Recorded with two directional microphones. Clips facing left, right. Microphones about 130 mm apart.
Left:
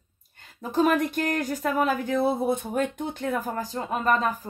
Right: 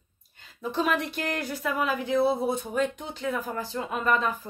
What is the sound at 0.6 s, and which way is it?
Speech, 45° left (ahead or behind).